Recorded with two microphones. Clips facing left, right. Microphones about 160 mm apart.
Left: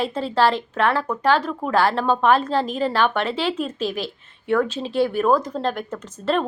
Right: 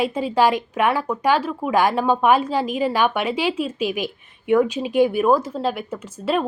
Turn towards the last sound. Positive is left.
turn(degrees=-10)  # may be behind; listen again after turning